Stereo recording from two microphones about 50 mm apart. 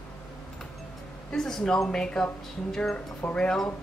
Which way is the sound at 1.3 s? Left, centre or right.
Centre.